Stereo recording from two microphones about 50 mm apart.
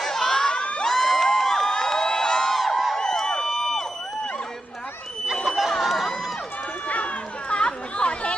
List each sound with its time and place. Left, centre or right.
0.0 s crowd: centre
0.8 s a sound: centre
5.5 s a sound: centre
5.8 s crowd: centre
6.8 s run: left
7.5 s chatter: left